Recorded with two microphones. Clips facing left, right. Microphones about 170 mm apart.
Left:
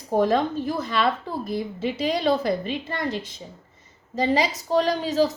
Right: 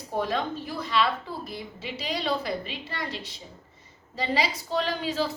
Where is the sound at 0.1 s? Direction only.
45° left (ahead or behind).